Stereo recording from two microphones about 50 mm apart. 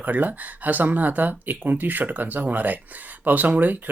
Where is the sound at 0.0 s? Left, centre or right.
Right.